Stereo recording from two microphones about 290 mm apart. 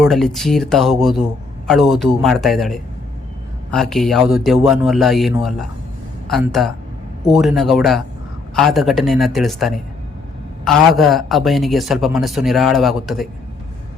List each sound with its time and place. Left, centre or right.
0.0 s a man's voice: centre